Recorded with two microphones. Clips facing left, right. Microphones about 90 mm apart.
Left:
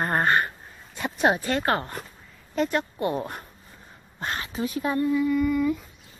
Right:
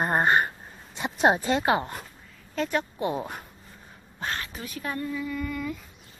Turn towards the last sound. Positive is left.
turn(degrees=5)  # may be behind; listen again after turning